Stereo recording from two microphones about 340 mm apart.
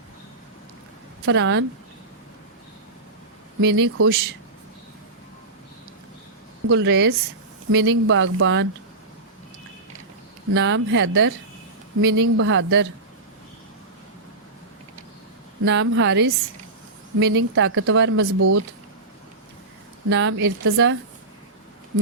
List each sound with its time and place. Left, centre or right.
1.2 s speech: right
3.6 s speech: right
6.7 s speech: right
10.5 s speech: right
15.6 s speech: right
17.3 s speech: right
20.1 s speech: right